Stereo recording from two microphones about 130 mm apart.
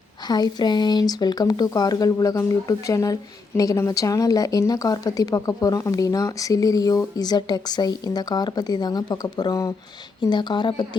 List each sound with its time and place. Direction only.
0.3 s speech: 30° left (ahead or behind)